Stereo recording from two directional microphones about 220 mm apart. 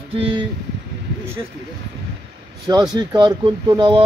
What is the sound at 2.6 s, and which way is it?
Speech, 15° right (ahead or behind).